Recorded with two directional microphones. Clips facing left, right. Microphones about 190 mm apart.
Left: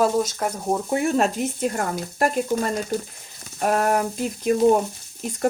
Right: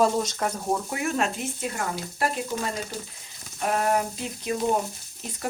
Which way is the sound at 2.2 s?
45° left (ahead or behind).